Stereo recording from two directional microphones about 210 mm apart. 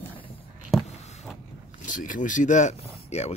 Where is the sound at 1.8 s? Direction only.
40° left (ahead or behind).